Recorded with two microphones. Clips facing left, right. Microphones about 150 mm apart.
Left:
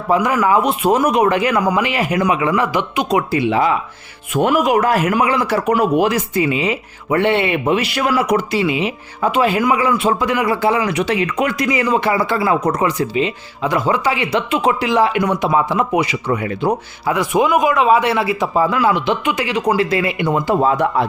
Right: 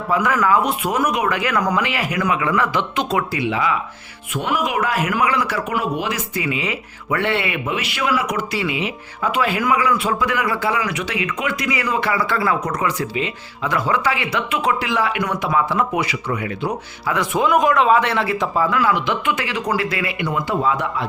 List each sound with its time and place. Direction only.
0.1 s speech: 20° left (ahead or behind)
3.3 s speech: 40° left (ahead or behind)
5.1 s speech: 30° left (ahead or behind)
5.6 s speech: 40° left (ahead or behind); by 7.6 s 25° left (ahead or behind)
7.6 s speech: 35° left (ahead or behind)
8.5 s speech: 20° left (ahead or behind); by 11.7 s 40° left (ahead or behind)
11.7 s speech: 25° left (ahead or behind)
17.2 s speech: 10° left (ahead or behind)
18.5 s speech: 25° left (ahead or behind)
20.3 s speech: 35° left (ahead or behind)